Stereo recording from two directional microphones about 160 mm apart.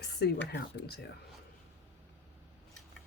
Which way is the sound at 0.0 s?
90° left.